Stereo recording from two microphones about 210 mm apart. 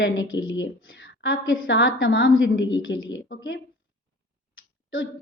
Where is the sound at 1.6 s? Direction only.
65° left (ahead or behind).